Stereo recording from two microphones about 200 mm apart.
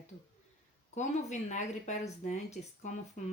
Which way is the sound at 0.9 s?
35° left (ahead or behind).